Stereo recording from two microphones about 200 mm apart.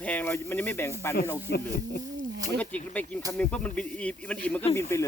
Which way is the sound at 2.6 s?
5° left (ahead or behind).